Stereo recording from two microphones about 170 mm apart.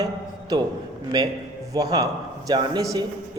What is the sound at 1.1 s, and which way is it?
A man's voice, 25° right (ahead or behind).